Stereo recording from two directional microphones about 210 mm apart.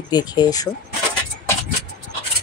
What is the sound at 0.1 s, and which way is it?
Speech, 20° left (ahead or behind).